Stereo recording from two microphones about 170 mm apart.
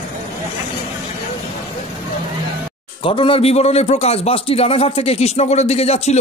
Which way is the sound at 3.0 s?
30° left (ahead or behind).